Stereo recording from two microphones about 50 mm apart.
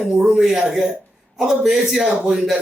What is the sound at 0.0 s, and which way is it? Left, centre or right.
Speech, centre.